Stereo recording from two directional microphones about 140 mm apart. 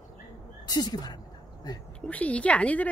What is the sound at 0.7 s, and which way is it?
Speech, 30° left (ahead or behind).